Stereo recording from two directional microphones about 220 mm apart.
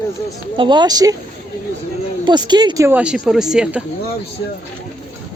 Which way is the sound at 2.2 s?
20° right (ahead or behind).